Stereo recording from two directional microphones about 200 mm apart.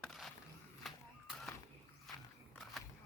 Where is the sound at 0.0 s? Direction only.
Centre (ahead or behind).